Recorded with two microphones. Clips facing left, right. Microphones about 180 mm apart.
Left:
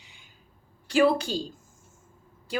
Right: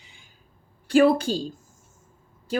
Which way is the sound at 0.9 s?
40° right (ahead or behind).